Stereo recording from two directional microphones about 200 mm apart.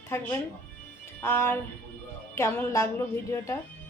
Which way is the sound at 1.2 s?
10° left (ahead or behind).